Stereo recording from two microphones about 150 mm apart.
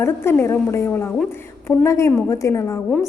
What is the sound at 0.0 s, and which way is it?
A woman's voice, 15° left (ahead or behind).